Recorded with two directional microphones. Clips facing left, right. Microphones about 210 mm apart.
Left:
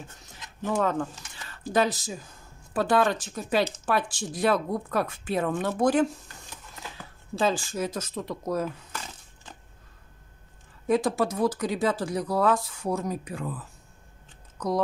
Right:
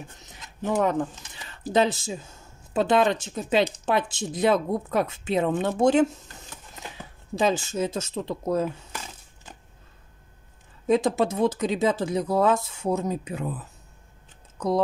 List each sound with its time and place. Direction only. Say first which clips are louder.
0.7 s speech: right 3 dB; 20° right (ahead or behind)
7.3 s speech: right 2 dB; 20° right (ahead or behind)
10.9 s speech: right 2 dB; 20° right (ahead or behind)